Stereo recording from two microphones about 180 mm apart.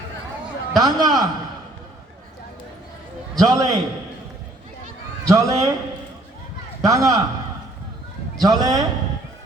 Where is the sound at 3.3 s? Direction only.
20° right (ahead or behind).